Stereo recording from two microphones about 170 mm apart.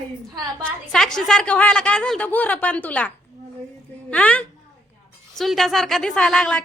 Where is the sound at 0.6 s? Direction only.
5° left (ahead or behind).